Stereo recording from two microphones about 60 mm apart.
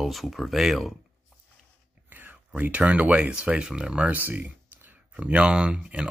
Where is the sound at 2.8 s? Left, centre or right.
Right.